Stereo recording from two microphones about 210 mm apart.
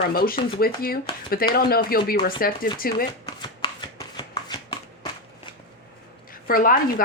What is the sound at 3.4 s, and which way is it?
Shuffling cards, 20° left (ahead or behind).